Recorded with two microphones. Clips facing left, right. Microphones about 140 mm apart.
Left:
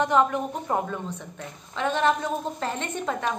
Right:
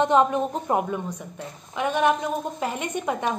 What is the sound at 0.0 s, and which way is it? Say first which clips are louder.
A woman's voice: right 3 dB; 20° right (ahead or behind).